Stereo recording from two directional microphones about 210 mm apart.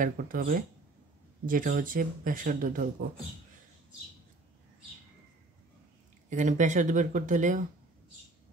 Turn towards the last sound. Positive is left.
turn(degrees=-35)  # may be behind; listen again after turning